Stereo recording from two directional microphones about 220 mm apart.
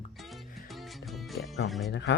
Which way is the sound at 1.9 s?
55° left (ahead or behind).